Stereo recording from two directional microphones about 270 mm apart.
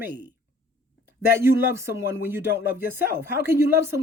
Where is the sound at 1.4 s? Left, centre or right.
Centre.